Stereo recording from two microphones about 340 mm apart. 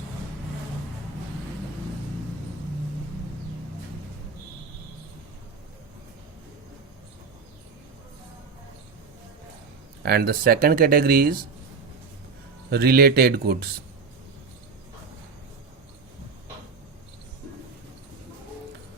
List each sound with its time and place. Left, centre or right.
10.0 s speech: right
12.7 s speech: right